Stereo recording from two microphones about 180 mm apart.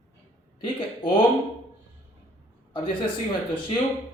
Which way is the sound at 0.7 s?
30° left (ahead or behind).